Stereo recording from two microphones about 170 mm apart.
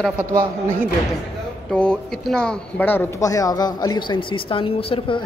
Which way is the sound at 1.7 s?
5° left (ahead or behind).